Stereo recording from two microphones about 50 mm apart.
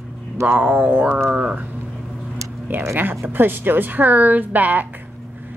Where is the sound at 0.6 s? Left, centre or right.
Right.